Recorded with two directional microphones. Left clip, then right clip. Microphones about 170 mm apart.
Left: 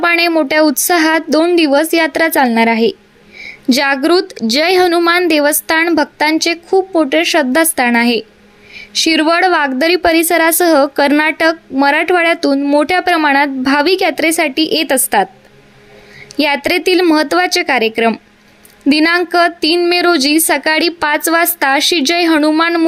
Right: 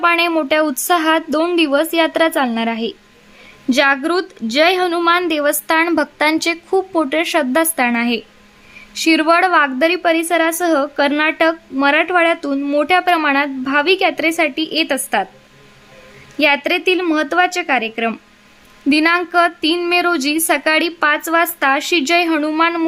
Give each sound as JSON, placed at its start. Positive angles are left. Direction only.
{"t": 0.0, "sound": "a woman's voice", "side_deg": 20}
{"t": 16.4, "sound": "a woman's voice", "side_deg": 25}